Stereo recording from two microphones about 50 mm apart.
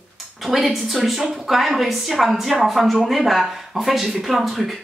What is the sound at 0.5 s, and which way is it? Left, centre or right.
Speech, centre.